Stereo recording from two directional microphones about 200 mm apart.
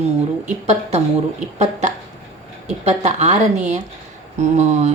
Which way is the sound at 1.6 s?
35° right (ahead or behind).